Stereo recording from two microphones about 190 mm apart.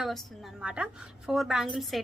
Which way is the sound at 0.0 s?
Centre (ahead or behind).